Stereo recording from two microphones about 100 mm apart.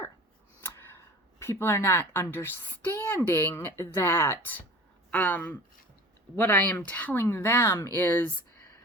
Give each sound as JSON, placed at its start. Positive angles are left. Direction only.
{"t": 0.6, "sound": "speech", "side_deg": 25}